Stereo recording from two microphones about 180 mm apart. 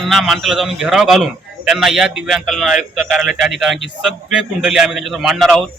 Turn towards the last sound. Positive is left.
turn(degrees=0)  # may be behind; listen again after turning